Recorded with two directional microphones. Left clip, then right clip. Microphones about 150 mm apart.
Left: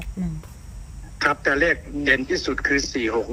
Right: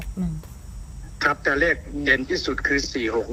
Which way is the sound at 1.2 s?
5° left (ahead or behind).